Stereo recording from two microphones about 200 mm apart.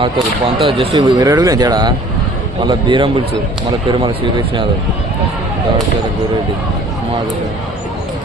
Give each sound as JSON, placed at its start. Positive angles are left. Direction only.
{"t": 0.6, "sound": "speech", "side_deg": -25}